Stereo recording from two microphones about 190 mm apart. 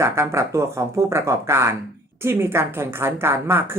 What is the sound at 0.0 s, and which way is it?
Speech, 15° right (ahead or behind).